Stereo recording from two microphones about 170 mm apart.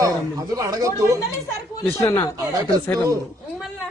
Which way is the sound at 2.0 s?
15° left (ahead or behind).